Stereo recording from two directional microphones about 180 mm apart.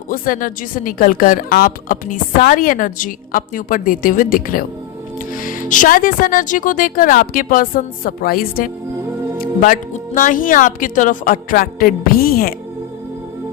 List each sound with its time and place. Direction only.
0.1 s a woman's voice: 50° left (ahead or behind)